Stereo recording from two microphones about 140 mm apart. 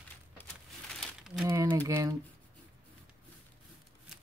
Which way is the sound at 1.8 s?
20° right (ahead or behind).